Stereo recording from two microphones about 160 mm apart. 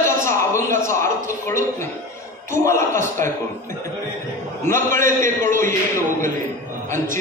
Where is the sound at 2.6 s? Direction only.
15° left (ahead or behind).